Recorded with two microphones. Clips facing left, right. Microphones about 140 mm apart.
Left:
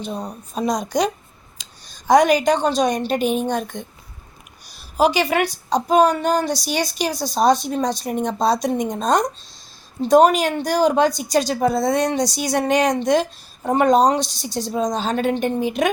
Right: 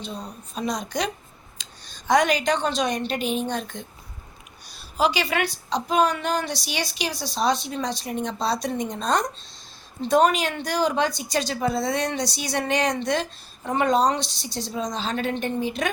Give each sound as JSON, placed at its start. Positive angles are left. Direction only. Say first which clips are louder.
{"t": 0.0, "sound": "a woman's voice", "louder": "left 6 dB", "side_deg": 45}
{"t": 1.9, "sound": "a sound", "louder": "left 6 dB", "side_deg": 40}
{"t": 2.4, "sound": "a woman's voice", "louder": "left 6 dB", "side_deg": 40}
{"t": 4.9, "sound": "a woman's voice", "louder": "left 5 dB", "side_deg": 45}